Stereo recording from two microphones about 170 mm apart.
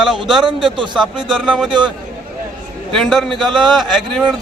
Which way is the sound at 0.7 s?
30° right (ahead or behind).